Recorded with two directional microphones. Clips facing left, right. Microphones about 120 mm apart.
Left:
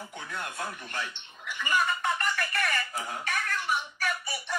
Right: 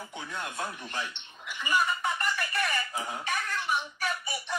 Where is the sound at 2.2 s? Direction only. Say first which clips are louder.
Even; 15° right (ahead or behind).